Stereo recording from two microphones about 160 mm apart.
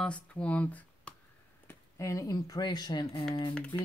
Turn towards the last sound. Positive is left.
turn(degrees=5)  # may be behind; listen again after turning